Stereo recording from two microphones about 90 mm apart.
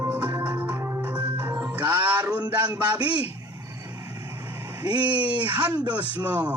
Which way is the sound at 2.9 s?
50° right (ahead or behind).